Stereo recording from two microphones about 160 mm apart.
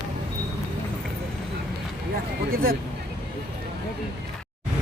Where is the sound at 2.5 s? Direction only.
70° right (ahead or behind).